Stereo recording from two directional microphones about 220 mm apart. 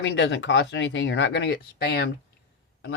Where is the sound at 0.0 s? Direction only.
55° left (ahead or behind).